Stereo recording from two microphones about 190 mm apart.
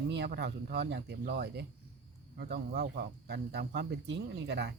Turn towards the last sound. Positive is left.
turn(degrees=-65)  # may be behind; listen again after turning